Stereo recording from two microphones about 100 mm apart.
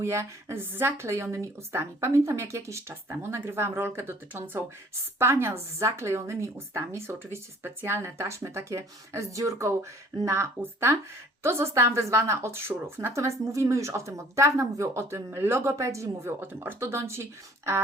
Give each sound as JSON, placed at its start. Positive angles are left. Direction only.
{"t": 0.0, "sound": "speech", "side_deg": -30}